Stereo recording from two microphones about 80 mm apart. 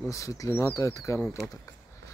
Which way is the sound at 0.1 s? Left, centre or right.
Left.